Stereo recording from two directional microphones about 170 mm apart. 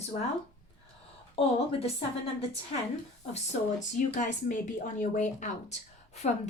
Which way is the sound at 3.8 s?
50° left (ahead or behind).